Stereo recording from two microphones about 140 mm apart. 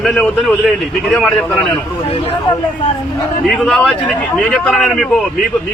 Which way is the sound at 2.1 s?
45° left (ahead or behind).